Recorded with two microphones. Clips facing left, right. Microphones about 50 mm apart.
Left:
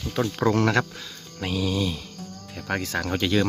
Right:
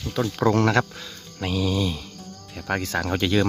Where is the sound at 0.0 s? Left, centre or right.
Centre.